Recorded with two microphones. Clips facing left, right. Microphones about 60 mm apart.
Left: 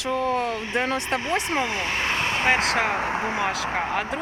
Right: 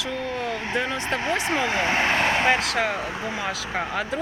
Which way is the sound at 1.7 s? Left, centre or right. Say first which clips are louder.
Right 4 dB; right.